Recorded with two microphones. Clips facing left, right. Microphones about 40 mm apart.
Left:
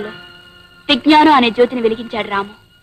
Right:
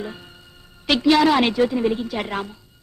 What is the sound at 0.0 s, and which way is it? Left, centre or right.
A woman's voice, left.